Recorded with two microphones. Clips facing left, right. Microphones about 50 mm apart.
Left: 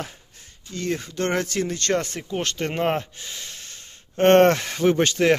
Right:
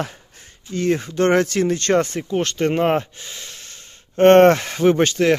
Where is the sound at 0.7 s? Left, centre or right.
Right.